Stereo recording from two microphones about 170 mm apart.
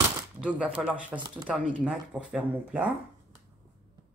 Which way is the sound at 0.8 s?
5° right (ahead or behind).